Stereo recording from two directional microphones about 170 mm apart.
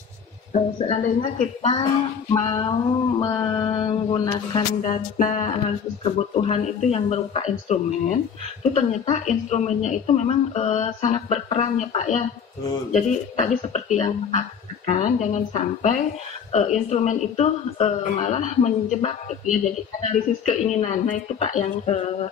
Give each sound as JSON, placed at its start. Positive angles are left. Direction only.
{"t": 0.7, "sound": "a woman's voice", "side_deg": 40}
{"t": 2.4, "sound": "mantra", "side_deg": 25}
{"t": 4.8, "sound": "a woman's voice", "side_deg": 50}
{"t": 6.0, "sound": "a woman's voice", "side_deg": 35}